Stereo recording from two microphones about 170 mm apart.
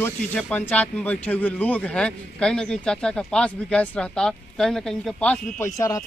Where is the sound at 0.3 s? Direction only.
10° left (ahead or behind).